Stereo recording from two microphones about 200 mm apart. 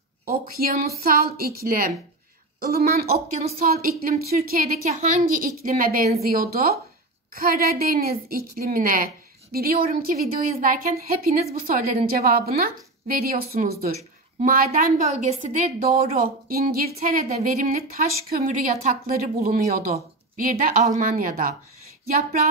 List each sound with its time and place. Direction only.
0.2 s a woman's voice: 45° right (ahead or behind)
15.0 s a woman's voice: 35° right (ahead or behind)